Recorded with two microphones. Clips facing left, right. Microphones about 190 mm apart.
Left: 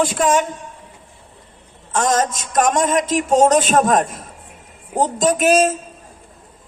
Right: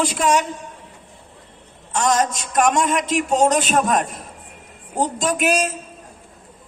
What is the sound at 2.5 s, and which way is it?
A man's voice, 45° left (ahead or behind).